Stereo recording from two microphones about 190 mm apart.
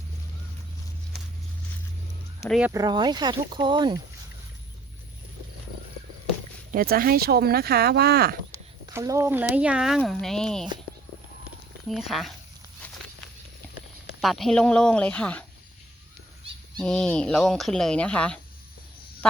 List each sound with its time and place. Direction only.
2.5 s speech: 5° right (ahead or behind)
2.7 s speech: 20° right (ahead or behind)
6.7 s speech: 50° right (ahead or behind)
8.5 s speech: 15° right (ahead or behind); by 10.7 s 5° left (ahead or behind)
11.9 s speech: centre (ahead or behind)
12.8 s walk: 10° left (ahead or behind)
14.2 s speech: centre (ahead or behind)
16.8 s speech: 5° left (ahead or behind)
19.2 s fowl: 5° left (ahead or behind)